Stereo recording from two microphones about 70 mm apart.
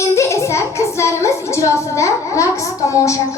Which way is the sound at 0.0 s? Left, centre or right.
Left.